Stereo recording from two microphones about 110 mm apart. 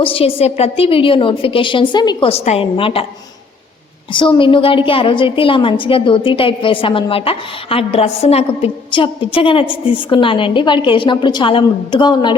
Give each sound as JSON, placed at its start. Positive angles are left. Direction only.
{"t": 0.0, "sound": "a woman's voice", "side_deg": 55}
{"t": 2.2, "sound": "a woman's voice", "side_deg": 80}
{"t": 2.7, "sound": "a woman's voice", "side_deg": 55}
{"t": 4.1, "sound": "a woman's voice", "side_deg": 50}
{"t": 8.9, "sound": "a woman's voice", "side_deg": 55}